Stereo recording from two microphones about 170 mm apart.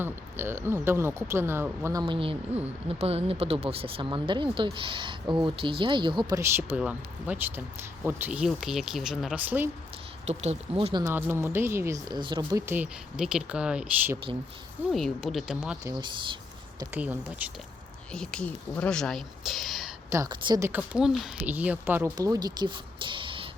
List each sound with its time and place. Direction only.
0.0 s speech: 15° right (ahead or behind)
6.4 s speech: 10° right (ahead or behind)
10.2 s speech: 40° right (ahead or behind)
11.0 s speech: 15° right (ahead or behind)
15.8 s speech: 25° right (ahead or behind)
16.8 s speech: 10° right (ahead or behind)
18.1 s speech: 5° left (ahead or behind)
20.1 s speech: 20° right (ahead or behind)
20.6 s speech: 10° right (ahead or behind); by 23.5 s 30° right (ahead or behind)